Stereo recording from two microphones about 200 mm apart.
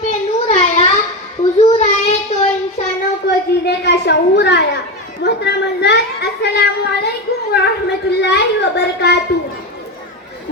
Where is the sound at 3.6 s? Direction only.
55° left (ahead or behind).